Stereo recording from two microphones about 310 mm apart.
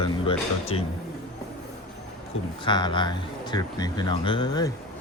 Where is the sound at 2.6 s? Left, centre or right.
Centre.